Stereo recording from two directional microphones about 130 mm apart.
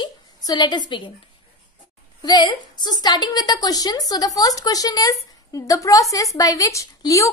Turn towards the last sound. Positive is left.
turn(degrees=25)  # may be behind; listen again after turning